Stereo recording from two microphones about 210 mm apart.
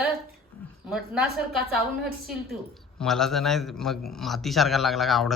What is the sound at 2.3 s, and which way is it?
Speech, centre (ahead or behind).